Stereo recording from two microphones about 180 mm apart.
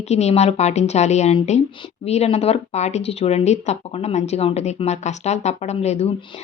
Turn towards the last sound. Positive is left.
turn(degrees=35)  # may be behind; listen again after turning